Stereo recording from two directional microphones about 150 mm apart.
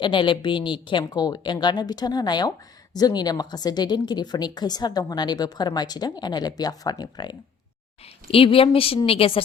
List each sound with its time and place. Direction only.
0.0 s a woman's voice: 30° left (ahead or behind)
8.0 s a woman's voice: 40° left (ahead or behind)